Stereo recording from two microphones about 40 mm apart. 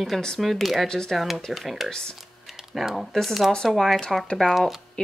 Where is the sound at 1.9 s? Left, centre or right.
Centre.